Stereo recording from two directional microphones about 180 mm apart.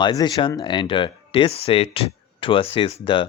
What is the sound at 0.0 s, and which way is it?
Speech, 25° left (ahead or behind).